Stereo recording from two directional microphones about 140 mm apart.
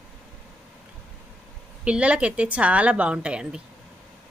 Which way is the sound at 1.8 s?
10° right (ahead or behind).